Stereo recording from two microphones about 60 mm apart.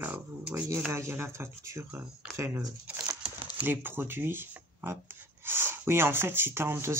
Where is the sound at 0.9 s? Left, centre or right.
Right.